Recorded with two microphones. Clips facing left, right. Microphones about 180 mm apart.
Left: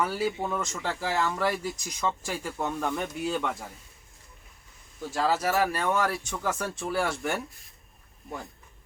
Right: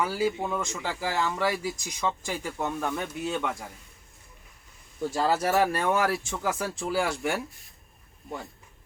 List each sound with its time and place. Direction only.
0.0 s speech: centre (ahead or behind)
2.0 s speech: 5° left (ahead or behind)
5.0 s speech: centre (ahead or behind)